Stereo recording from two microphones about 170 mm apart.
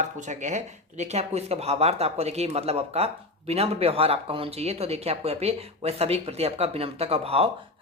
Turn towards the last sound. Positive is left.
turn(degrees=-35)  # may be behind; listen again after turning